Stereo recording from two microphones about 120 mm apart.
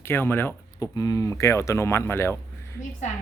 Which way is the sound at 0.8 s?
30° left (ahead or behind).